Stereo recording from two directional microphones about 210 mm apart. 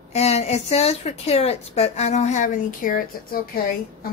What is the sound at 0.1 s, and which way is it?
A woman's voice, 30° left (ahead or behind).